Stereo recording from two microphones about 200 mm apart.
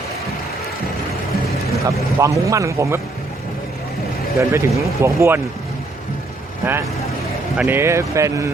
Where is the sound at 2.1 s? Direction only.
15° right (ahead or behind).